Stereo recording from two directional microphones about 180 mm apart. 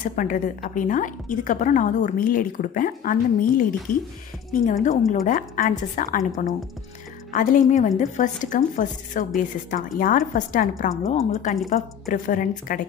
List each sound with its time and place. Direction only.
0.0 s a woman's voice: 45° left (ahead or behind)